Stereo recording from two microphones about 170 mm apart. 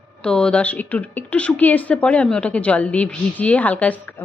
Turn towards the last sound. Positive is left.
turn(degrees=10)  # may be behind; listen again after turning